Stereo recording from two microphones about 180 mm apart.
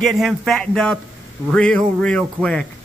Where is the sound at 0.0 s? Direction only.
Centre (ahead or behind).